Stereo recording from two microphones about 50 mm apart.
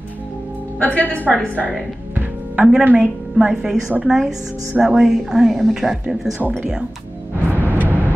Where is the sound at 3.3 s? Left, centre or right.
Centre.